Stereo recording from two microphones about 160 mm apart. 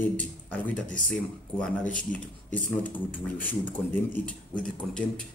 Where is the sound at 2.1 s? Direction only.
10° left (ahead or behind).